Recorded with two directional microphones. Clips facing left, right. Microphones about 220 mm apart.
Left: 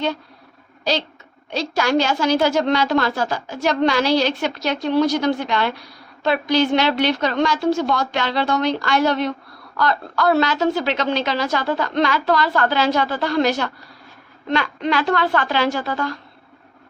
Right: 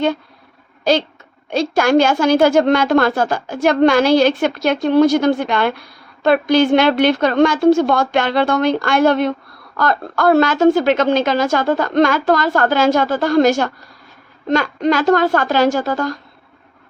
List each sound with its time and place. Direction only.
0.9 s a woman's voice: 55° right (ahead or behind)